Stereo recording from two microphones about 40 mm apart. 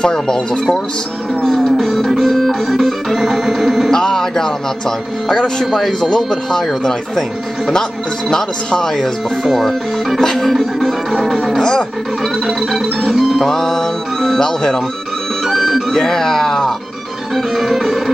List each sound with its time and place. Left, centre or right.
0.0 s speech: centre
1.4 s music: centre
3.9 s speech: centre
8.3 s speech: centre
9.4 s music: centre
12.4 s music: centre
13.5 s music: centre
15.4 s music: centre
15.9 s speech: centre
17.4 s music: centre